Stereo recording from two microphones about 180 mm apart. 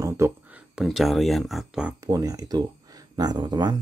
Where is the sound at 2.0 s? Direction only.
20° right (ahead or behind).